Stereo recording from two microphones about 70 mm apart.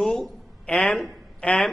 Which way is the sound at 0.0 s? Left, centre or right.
Centre.